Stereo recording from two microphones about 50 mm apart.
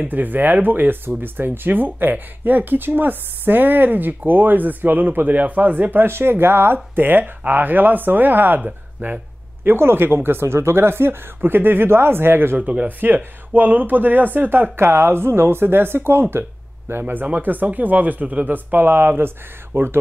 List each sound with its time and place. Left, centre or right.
0.0 s speech: right
6.0 s speech: right
8.5 s speech: right
9.7 s speech: right
12.5 s speech: right
14.8 s speech: right
17.4 s speech: right